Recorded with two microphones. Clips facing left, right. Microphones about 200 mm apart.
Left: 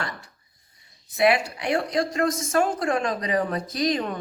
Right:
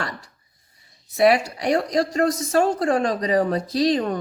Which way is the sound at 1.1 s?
40° right (ahead or behind).